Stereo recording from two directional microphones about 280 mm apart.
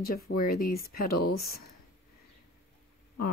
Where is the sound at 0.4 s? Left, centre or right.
Left.